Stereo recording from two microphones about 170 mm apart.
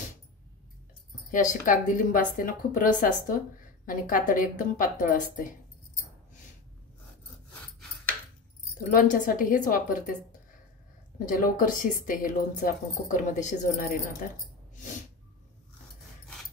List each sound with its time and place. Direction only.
1.3 s speech: 50° left (ahead or behind)
8.9 s speech: 50° left (ahead or behind)
11.1 s speech: 55° left (ahead or behind)